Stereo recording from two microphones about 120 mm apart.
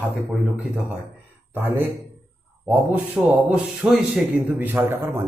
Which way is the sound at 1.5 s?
15° right (ahead or behind).